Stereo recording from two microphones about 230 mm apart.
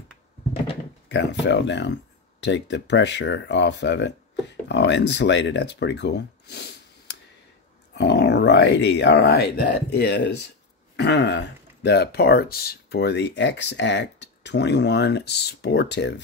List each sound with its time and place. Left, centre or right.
1.0 s speech: left